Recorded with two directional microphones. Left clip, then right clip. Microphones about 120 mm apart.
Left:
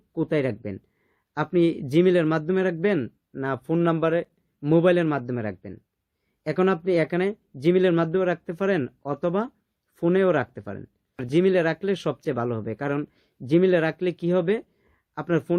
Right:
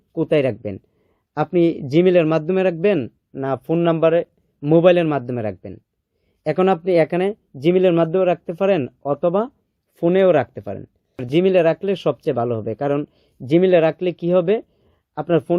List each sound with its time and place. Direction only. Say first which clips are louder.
0.1 s speech: right 7 dB; 25° right (ahead or behind)